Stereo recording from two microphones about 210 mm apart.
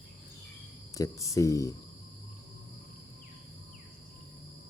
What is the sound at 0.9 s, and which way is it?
Speech, 15° left (ahead or behind).